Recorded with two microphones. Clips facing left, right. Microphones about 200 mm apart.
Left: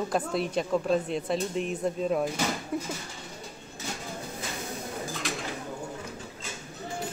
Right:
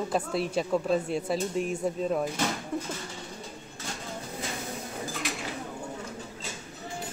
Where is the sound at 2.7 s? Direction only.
5° left (ahead or behind).